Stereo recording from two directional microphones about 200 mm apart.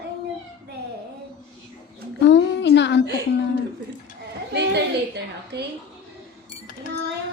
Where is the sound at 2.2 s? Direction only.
60° left (ahead or behind).